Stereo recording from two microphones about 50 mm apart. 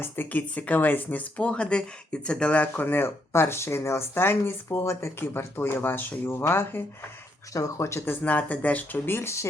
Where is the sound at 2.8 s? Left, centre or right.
Left.